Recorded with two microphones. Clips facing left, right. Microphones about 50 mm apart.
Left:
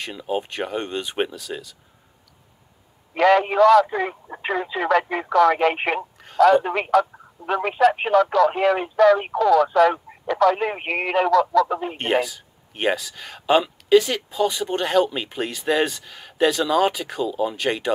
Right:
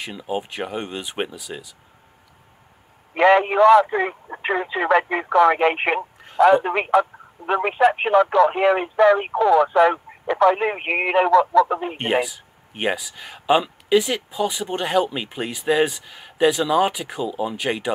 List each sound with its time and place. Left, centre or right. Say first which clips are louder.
0.0 s speech: left 1 dB; centre
3.2 s a man's voice: right 1 dB; right
5.9 s speech: right 2 dB; centre
6.3 s a man's voice: right 1 dB; right